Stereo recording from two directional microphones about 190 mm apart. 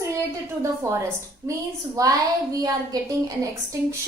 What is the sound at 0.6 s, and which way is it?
A woman's voice, 15° right (ahead or behind).